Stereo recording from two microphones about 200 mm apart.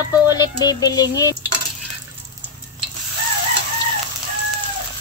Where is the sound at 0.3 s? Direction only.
20° left (ahead or behind).